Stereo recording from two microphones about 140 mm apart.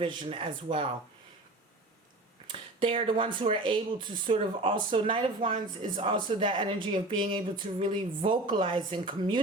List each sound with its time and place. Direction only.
0.0 s speech: 35° right (ahead or behind)
2.5 s speech: 35° right (ahead or behind)